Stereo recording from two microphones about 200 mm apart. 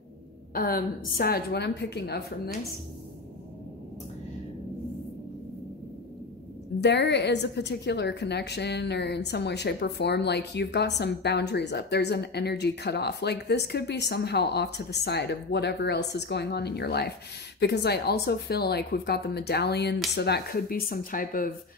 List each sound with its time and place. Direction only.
0.6 s a woman's voice: 50° left (ahead or behind)
6.8 s a woman's voice: 55° left (ahead or behind)